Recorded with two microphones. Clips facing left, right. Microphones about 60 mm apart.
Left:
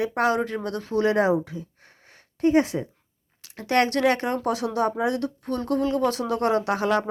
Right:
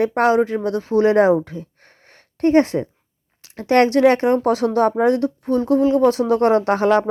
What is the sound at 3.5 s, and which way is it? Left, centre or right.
Speech, right.